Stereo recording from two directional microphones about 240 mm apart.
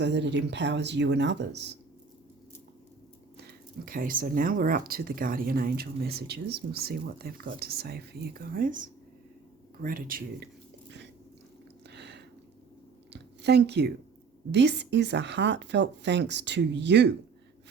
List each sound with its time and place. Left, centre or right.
0.0 s speech: right
3.8 s speech: right
11.9 s a sound: right
13.1 s speech: right